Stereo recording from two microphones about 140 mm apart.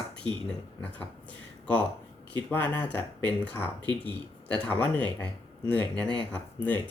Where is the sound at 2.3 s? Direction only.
10° left (ahead or behind).